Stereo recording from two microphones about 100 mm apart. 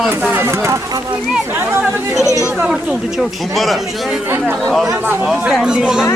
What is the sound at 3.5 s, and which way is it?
Speech, centre (ahead or behind).